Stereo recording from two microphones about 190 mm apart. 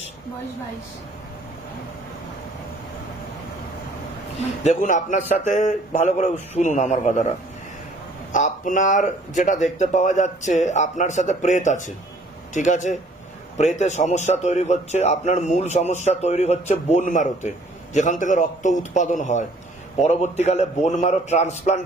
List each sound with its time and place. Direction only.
4.6 s a man's voice: 40° left (ahead or behind)